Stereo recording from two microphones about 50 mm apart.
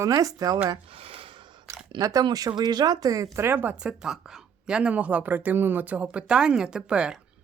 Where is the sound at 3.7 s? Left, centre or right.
Centre; by 6.2 s right.